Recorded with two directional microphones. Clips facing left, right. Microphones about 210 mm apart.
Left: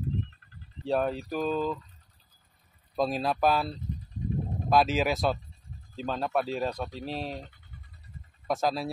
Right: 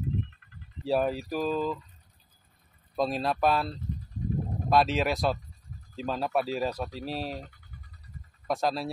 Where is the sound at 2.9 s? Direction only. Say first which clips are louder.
Even; centre (ahead or behind).